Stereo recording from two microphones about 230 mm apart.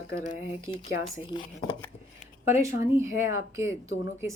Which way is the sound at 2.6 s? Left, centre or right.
Centre.